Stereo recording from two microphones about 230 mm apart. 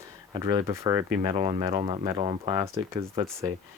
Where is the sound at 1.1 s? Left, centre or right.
Right.